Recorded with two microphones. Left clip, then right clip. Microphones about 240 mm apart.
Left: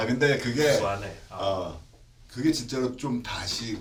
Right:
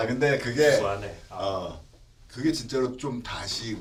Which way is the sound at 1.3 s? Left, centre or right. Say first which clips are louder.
Even; centre.